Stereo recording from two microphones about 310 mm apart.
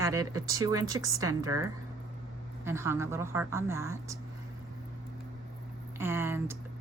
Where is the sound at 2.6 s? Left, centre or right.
Centre.